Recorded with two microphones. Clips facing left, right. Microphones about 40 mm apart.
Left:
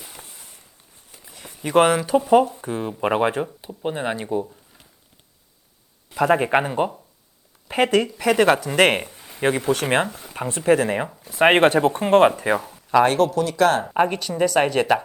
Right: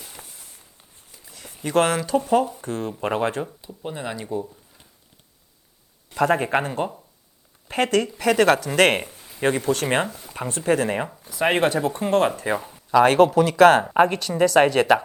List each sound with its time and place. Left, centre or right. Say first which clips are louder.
0.0 s a sound: left 1 dB; centre
0.3 s a sound: left 2 dB; centre
1.6 s speech: left 3 dB; centre
3.6 s speech: left 5 dB; left
6.1 s a man's voice: left 2 dB; centre
6.5 s speech: left 3 dB; centre
9.1 s a sound: left 1 dB; centre
9.5 s speech: left 1 dB; centre
11.3 s speech: left 5 dB; left; by 13.1 s centre
13.1 s speech: right 4 dB; centre
14.1 s speech: right 2 dB; centre